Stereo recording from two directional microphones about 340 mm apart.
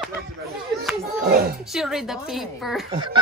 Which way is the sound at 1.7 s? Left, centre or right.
Centre.